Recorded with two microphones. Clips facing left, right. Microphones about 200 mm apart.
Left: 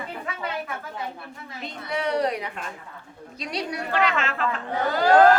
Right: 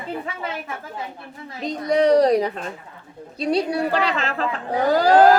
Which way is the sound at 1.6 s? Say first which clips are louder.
Right 11 dB; 40° right (ahead or behind).